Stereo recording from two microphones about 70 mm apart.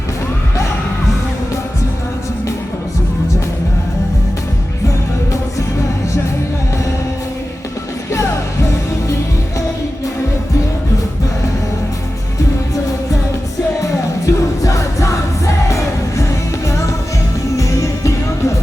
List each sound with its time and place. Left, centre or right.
14.3 s music: left
17.6 s music: left